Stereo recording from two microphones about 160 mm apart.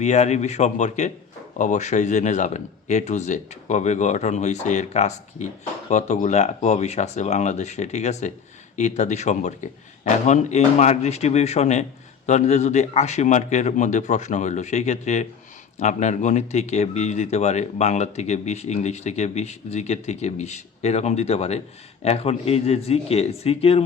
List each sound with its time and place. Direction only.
0.0 s speech: 45° left (ahead or behind)